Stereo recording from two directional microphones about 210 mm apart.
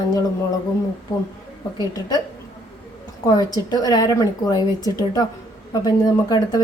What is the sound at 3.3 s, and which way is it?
A woman's voice, 15° left (ahead or behind).